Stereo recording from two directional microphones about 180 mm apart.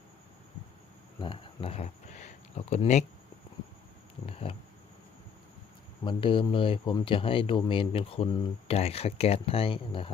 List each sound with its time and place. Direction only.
1.2 s speech: 30° left (ahead or behind)
4.3 s a sound: 30° left (ahead or behind)
6.1 s speech: 30° left (ahead or behind)